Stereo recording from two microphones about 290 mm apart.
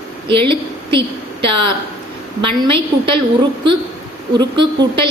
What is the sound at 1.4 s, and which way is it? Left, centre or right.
Speech, centre.